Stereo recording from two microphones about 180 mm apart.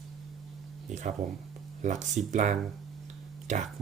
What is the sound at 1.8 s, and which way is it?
Speech, 40° right (ahead or behind).